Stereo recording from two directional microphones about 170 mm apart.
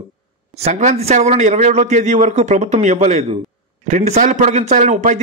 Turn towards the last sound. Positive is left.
turn(degrees=-45)  # may be behind; listen again after turning